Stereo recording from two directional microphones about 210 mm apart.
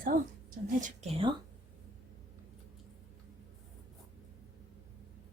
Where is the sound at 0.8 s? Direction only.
30° right (ahead or behind).